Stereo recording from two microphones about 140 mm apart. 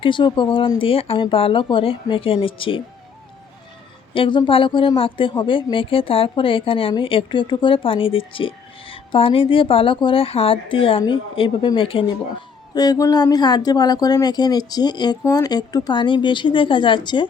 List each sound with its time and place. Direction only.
0.0 s a woman's voice: 35° left (ahead or behind)
4.1 s a woman's voice: 35° left (ahead or behind)
12.7 s a woman's voice: 25° left (ahead or behind)